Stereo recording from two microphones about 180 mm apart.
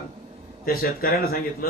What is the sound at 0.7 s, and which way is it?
Speech, 55° left (ahead or behind).